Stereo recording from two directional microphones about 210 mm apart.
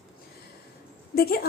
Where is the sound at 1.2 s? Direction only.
45° left (ahead or behind).